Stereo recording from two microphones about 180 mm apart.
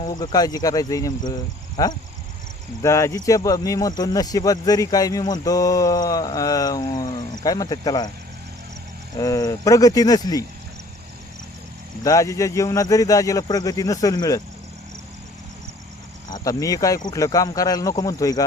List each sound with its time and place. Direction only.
0.0 s speech: 25° left (ahead or behind)
9.1 s speech: 20° left (ahead or behind)
12.0 s speech: 20° left (ahead or behind)
16.3 s speech: 20° left (ahead or behind)